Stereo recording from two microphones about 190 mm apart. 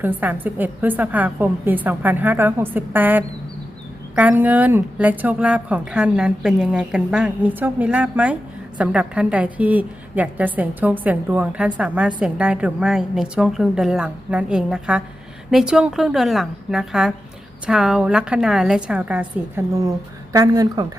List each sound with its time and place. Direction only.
0.0 s a woman's voice: 10° right (ahead or behind)